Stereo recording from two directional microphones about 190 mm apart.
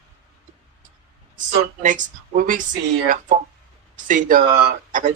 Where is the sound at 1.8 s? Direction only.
40° right (ahead or behind).